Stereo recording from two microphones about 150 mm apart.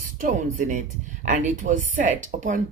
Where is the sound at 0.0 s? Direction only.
60° right (ahead or behind).